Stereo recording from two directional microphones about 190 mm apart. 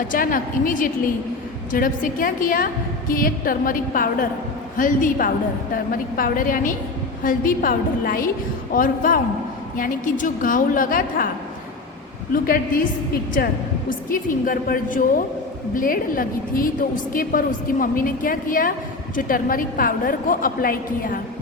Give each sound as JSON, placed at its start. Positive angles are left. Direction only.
{"t": 0.1, "sound": "a woman's voice", "side_deg": 45}
{"t": 12.3, "sound": "a woman's voice", "side_deg": 50}
{"t": 14.1, "sound": "a woman's voice", "side_deg": 45}